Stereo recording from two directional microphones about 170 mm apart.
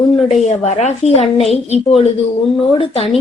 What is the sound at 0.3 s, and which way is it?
Speech, 40° left (ahead or behind).